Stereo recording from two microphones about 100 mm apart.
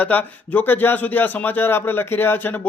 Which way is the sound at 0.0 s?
15° left (ahead or behind).